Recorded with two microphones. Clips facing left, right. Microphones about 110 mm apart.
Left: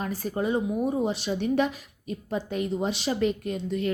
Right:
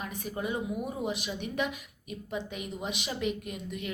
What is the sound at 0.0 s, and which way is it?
A woman's voice, 35° left (ahead or behind).